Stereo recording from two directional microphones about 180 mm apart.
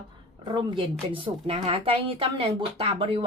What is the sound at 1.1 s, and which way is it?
Speech, 30° right (ahead or behind).